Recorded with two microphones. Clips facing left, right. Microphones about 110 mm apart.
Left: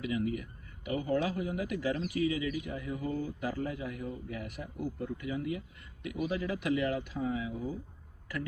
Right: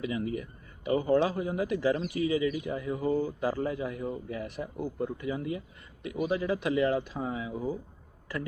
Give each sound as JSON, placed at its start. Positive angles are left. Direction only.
{"t": 0.0, "sound": "speech", "side_deg": -30}